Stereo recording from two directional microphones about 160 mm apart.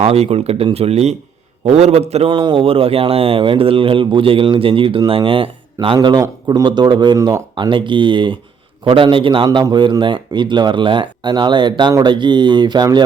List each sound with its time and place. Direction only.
0.0 s a man's voice: 40° right (ahead or behind)